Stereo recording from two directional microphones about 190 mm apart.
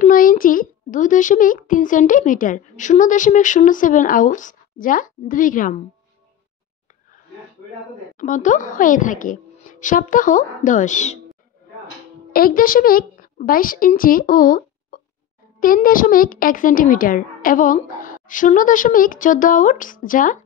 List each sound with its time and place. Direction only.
0.0 s a child's voice: 45° left (ahead or behind)
8.2 s a child's voice: 40° left (ahead or behind)
12.3 s a woman's voice: 50° left (ahead or behind)